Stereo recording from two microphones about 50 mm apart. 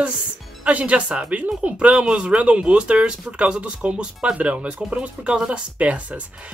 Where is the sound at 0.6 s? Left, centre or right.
Right.